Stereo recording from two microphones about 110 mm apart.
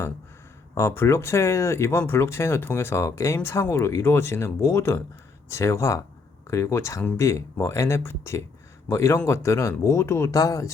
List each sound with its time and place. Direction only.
0.7 s speech: 25° left (ahead or behind)